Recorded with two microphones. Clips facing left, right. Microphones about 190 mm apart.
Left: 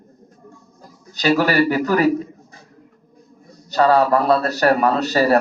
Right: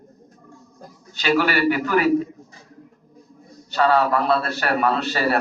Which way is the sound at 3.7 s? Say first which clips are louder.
Left 4 dB; 40° left (ahead or behind).